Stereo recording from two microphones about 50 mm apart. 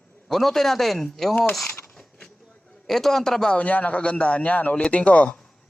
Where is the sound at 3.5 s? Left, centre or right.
Left.